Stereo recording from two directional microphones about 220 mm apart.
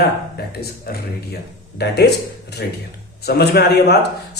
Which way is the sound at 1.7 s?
50° left (ahead or behind).